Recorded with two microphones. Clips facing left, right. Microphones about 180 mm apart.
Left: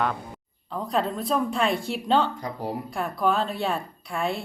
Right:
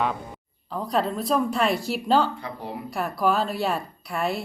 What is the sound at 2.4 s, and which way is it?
Speech, 40° left (ahead or behind).